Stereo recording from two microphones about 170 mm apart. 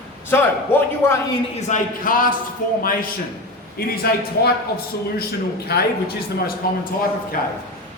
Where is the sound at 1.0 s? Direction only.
15° left (ahead or behind).